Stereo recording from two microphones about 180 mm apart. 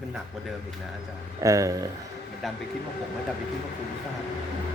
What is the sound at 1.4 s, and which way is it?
Speech, 20° right (ahead or behind).